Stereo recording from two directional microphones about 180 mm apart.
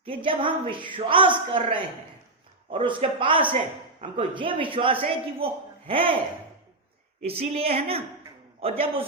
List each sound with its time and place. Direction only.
0.0 s a man's voice: 30° right (ahead or behind)
7.3 s a woman's voice: 35° right (ahead or behind)